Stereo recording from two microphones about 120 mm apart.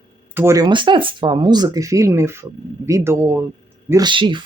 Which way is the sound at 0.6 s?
40° right (ahead or behind).